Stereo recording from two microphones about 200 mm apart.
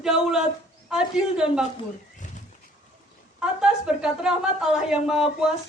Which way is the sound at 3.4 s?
5° right (ahead or behind).